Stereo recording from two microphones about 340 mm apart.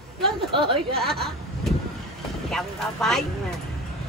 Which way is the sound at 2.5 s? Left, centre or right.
Centre.